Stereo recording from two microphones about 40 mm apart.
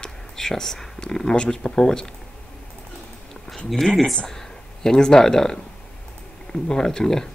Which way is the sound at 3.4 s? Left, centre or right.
Centre.